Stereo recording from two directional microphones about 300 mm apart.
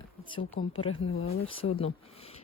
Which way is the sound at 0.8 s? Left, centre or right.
Left.